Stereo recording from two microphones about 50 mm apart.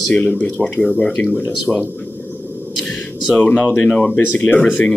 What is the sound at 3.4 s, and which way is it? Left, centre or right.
Speech, left.